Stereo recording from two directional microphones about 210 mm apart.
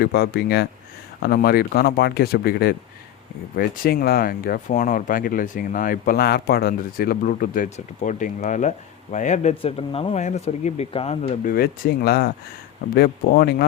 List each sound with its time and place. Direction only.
0.0 s speech: 50° left (ahead or behind); by 11.5 s 30° left (ahead or behind)
11.5 s speech: 45° left (ahead or behind)